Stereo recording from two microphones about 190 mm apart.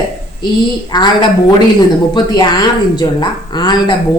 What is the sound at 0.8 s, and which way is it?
A woman's voice, 20° left (ahead or behind).